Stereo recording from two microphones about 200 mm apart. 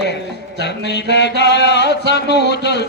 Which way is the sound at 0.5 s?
60° left (ahead or behind).